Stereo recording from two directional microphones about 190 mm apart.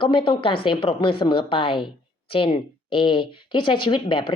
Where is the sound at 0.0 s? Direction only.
25° left (ahead or behind).